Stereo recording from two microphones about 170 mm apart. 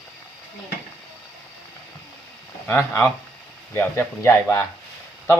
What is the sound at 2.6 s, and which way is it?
A man's voice, 15° left (ahead or behind).